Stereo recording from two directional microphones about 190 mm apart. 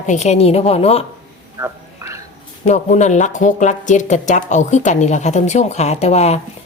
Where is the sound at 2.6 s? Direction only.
40° left (ahead or behind).